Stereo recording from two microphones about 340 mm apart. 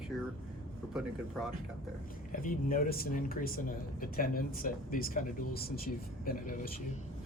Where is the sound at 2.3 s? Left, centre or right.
Left.